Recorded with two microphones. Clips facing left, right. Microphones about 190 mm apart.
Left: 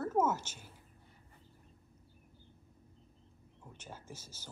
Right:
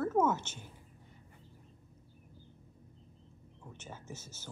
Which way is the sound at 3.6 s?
10° left (ahead or behind).